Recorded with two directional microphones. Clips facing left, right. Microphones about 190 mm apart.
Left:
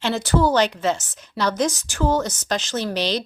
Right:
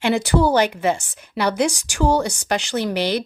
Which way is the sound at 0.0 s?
15° right (ahead or behind).